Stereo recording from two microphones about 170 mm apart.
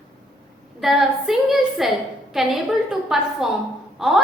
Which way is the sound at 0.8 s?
Centre (ahead or behind).